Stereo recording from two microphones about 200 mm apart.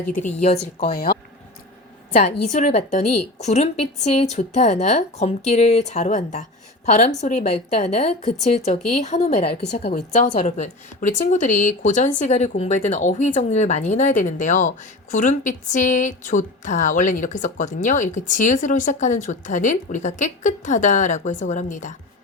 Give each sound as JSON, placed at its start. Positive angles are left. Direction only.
{"t": 0.4, "sound": "a woman's voice", "side_deg": 35}
{"t": 0.9, "sound": "speech", "side_deg": 50}
{"t": 2.1, "sound": "a woman's voice", "side_deg": 40}